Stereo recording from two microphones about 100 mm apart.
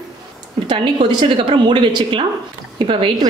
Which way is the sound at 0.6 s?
55° right (ahead or behind).